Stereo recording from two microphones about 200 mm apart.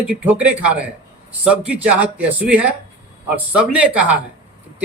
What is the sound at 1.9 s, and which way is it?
Speech, 5° right (ahead or behind).